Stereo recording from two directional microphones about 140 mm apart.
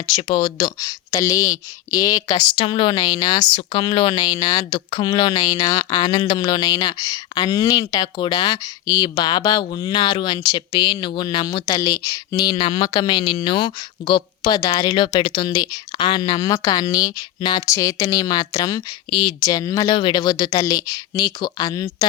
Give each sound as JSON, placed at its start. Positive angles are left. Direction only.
{"t": 0.1, "sound": "speech", "side_deg": 35}
{"t": 3.5, "sound": "speech", "side_deg": 35}